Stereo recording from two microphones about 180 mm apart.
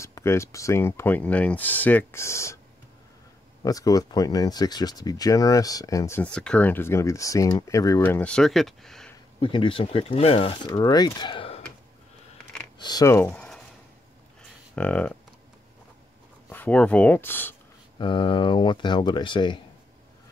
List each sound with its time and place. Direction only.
0.0 s speech: 15° left (ahead or behind)
3.6 s speech: 20° left (ahead or behind); by 9.1 s centre (ahead or behind)
9.4 s speech: 30° left (ahead or behind)
12.7 s speech: 20° left (ahead or behind)
14.8 s speech: 10° left (ahead or behind)
16.4 s speech: 10° left (ahead or behind)
17.9 s speech: 25° left (ahead or behind)